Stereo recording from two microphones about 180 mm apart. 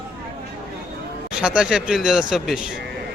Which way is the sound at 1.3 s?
5° right (ahead or behind).